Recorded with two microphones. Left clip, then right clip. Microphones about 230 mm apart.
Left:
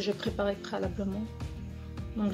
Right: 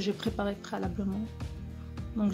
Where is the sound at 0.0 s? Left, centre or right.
Right.